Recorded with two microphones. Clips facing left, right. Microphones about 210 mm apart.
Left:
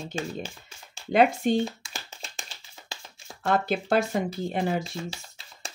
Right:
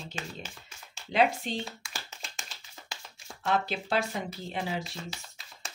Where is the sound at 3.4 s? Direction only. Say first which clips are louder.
Left 4 dB; 50° left (ahead or behind).